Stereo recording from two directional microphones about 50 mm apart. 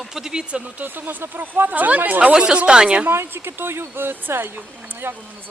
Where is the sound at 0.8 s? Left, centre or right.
Right.